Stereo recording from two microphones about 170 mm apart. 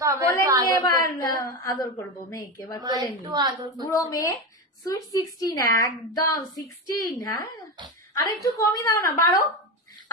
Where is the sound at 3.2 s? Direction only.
25° right (ahead or behind).